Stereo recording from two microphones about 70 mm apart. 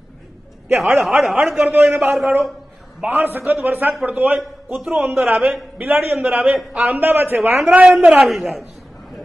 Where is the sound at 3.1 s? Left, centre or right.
Right.